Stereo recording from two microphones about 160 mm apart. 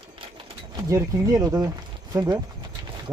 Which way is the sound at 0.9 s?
20° right (ahead or behind).